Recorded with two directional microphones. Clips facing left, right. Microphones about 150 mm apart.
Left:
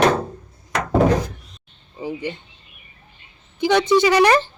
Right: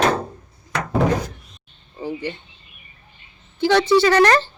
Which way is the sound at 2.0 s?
15° left (ahead or behind).